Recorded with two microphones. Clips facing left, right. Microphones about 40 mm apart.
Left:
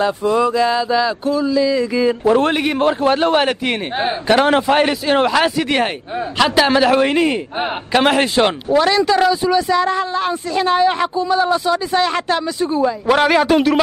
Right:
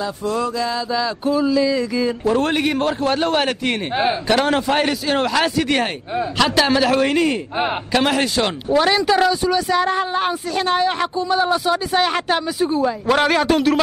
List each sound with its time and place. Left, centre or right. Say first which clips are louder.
0.2 s mantra: left 4 dB; left
1.2 s speech: left 1 dB; centre
2.0 s a man's voice: left 7 dB; centre
7.9 s mantra: left 5 dB; left
8.6 s speech: right 2 dB; centre
8.9 s speech: left 2 dB; centre
9.2 s speech: left 2 dB; centre
9.7 s speech: left 2 dB; centre
10.5 s speech: left 5 dB; centre
13.0 s a man's voice: left 4 dB; centre